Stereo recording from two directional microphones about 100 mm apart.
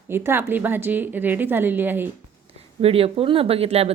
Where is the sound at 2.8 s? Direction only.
75° right (ahead or behind).